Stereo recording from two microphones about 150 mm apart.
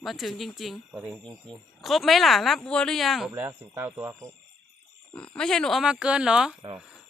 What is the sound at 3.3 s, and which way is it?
Speech, 15° right (ahead or behind).